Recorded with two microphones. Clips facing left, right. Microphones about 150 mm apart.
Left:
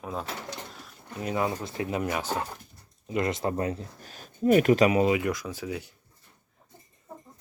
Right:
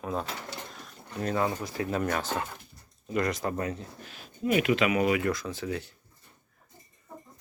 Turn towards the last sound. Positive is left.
turn(degrees=10)  # may be behind; listen again after turning